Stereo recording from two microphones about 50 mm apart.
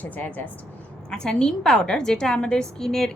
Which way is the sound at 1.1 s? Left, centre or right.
Centre.